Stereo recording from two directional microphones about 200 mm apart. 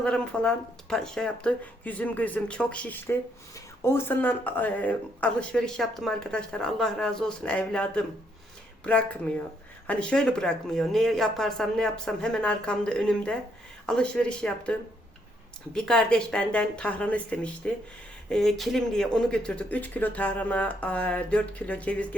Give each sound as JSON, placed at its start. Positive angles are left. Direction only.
{"t": 0.0, "sound": "speech", "side_deg": 5}